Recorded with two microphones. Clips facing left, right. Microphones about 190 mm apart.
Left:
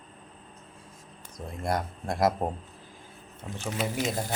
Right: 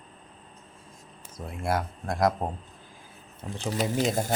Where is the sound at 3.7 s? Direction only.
40° right (ahead or behind).